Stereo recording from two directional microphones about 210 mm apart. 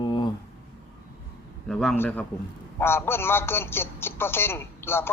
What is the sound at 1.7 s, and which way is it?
A man's voice, 5° left (ahead or behind).